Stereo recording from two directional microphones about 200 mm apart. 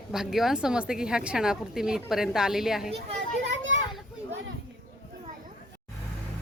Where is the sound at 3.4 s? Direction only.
65° right (ahead or behind).